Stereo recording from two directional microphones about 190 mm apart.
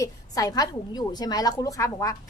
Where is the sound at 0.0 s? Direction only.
20° left (ahead or behind).